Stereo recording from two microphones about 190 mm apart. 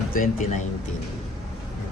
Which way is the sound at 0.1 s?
45° left (ahead or behind).